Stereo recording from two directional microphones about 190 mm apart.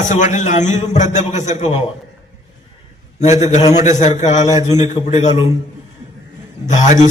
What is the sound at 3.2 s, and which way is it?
A man's voice, 40° left (ahead or behind).